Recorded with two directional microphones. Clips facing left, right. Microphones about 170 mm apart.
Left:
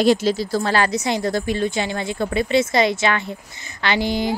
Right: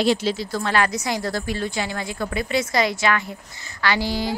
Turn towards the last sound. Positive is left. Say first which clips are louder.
# left 2 dB
turn(degrees=20)  # may be behind; listen again after turning